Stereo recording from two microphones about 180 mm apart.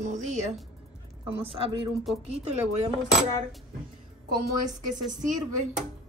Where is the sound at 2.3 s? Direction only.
35° right (ahead or behind).